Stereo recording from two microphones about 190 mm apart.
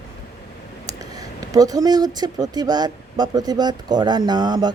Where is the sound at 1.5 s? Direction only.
20° right (ahead or behind).